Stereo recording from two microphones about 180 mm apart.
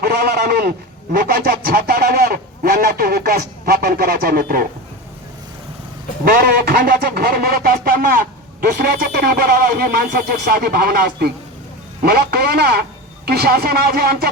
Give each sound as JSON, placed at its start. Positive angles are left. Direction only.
{"t": 0.0, "sound": "speech", "side_deg": -65}
{"t": 6.4, "sound": "speech", "side_deg": -60}